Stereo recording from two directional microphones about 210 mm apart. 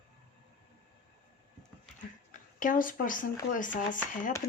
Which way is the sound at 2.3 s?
40° left (ahead or behind).